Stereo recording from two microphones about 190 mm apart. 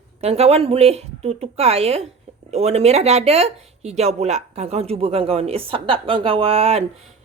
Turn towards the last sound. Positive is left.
turn(degrees=-30)  # may be behind; listen again after turning